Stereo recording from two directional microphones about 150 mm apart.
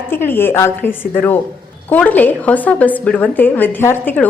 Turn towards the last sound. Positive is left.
turn(degrees=10)  # may be behind; listen again after turning